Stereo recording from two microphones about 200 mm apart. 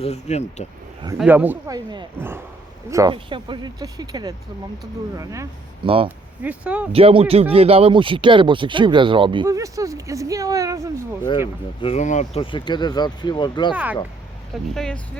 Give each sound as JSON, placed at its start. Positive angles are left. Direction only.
{"t": 0.0, "sound": "speech", "side_deg": 35}
{"t": 1.2, "sound": "speech", "side_deg": -10}
{"t": 5.8, "sound": "speech", "side_deg": -25}
{"t": 6.1, "sound": "speech", "side_deg": -5}
{"t": 6.9, "sound": "speech", "side_deg": -30}
{"t": 11.8, "sound": "speech", "side_deg": 30}
{"t": 14.5, "sound": "speech", "side_deg": 5}